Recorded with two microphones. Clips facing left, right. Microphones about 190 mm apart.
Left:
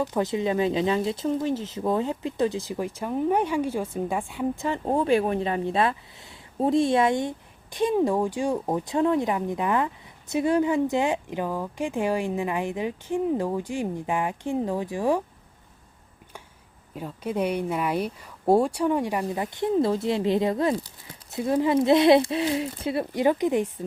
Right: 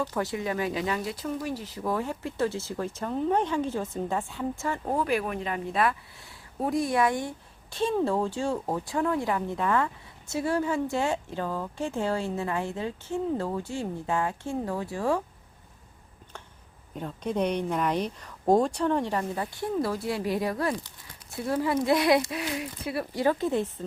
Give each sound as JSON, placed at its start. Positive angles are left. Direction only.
{"t": 0.0, "sound": "speech", "side_deg": 20}
{"t": 16.9, "sound": "speech", "side_deg": 5}